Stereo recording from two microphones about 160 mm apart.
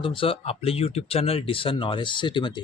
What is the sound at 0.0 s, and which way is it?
Speech, 35° left (ahead or behind).